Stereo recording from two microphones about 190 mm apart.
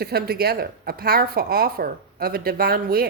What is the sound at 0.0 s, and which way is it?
Speech, 55° right (ahead or behind).